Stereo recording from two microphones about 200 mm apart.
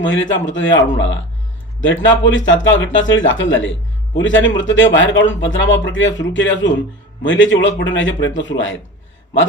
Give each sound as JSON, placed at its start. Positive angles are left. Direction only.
{"t": 0.0, "sound": "speech", "side_deg": 70}